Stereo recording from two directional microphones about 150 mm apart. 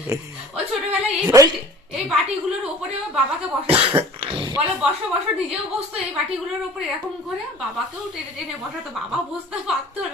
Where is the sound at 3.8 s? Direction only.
35° right (ahead or behind).